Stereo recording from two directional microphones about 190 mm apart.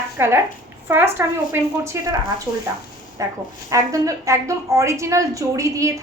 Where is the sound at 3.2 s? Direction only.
15° right (ahead or behind).